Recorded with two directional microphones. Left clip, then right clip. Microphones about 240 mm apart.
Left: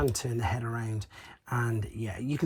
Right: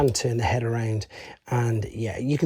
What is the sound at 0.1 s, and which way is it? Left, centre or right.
Speech, right.